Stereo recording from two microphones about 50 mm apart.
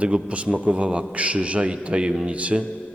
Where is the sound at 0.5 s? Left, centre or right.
Right.